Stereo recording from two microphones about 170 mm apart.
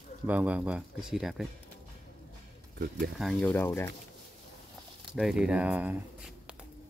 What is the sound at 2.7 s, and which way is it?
Speech, 60° right (ahead or behind).